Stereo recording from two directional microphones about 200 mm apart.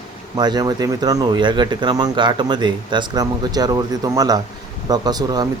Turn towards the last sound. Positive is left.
turn(degrees=-20)  # may be behind; listen again after turning